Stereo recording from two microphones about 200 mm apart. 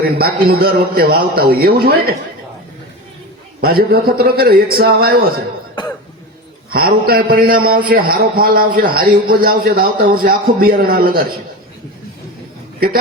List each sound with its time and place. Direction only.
0.2 s a man's voice: 50° right (ahead or behind)
3.6 s a man's voice: 50° right (ahead or behind)
6.7 s a man's voice: 50° right (ahead or behind)